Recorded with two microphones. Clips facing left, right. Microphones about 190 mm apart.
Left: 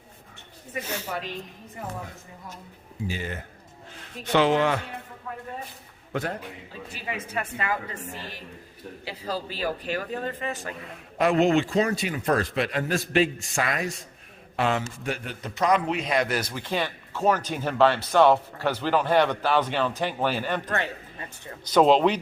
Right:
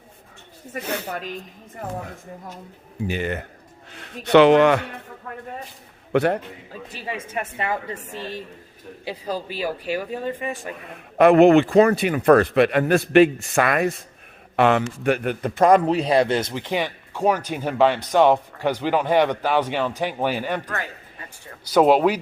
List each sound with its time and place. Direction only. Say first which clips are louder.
0.7 s a man's voice: right 4 dB; 60° right (ahead or behind)
3.1 s a man's voice: right 8 dB; 65° right (ahead or behind)
6.1 s speech: right 11 dB; 70° right (ahead or behind)
7.0 s a woman's voice: right 2 dB; 30° right (ahead or behind)
11.2 s a man's voice: right 8 dB; 60° right (ahead or behind)
15.9 s speech: right 7 dB; 35° right (ahead or behind); by 20.6 s 15° right (ahead or behind)
20.7 s a man's voice: left 2 dB; 25° left (ahead or behind)
21.6 s speech: right 2 dB; 10° right (ahead or behind)